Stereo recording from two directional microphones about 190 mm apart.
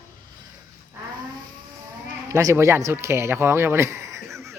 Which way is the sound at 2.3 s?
15° right (ahead or behind).